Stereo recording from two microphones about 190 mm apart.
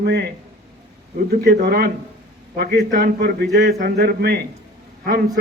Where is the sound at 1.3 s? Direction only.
55° right (ahead or behind).